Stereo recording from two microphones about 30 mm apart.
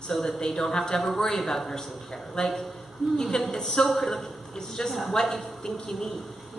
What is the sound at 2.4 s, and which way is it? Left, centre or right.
A man's voice, left.